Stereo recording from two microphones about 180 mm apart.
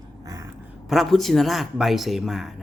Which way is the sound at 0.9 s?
Centre (ahead or behind).